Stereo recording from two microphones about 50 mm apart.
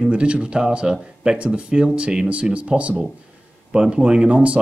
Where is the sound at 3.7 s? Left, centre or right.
Centre.